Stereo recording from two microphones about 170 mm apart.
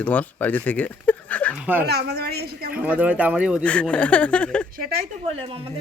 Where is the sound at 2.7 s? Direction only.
10° right (ahead or behind).